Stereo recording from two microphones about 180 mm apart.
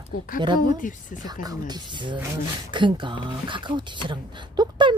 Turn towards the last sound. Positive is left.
turn(degrees=-25)  # may be behind; listen again after turning